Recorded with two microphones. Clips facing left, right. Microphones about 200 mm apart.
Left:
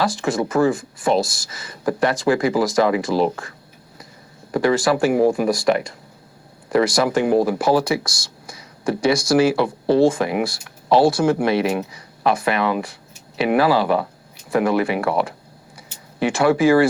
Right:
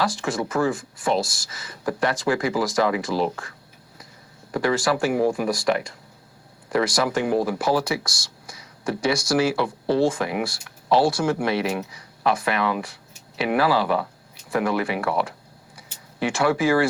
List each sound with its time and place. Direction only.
0.0 s speech: 20° left (ahead or behind)
1.2 s speech: 55° left (ahead or behind)
1.5 s speech: 25° left (ahead or behind)
4.5 s speech: 20° left (ahead or behind)
8.4 s a sound: 25° left (ahead or behind)
9.3 s speech: 20° left (ahead or behind)